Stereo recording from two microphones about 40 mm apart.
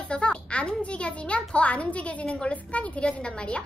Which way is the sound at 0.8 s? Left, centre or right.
Left.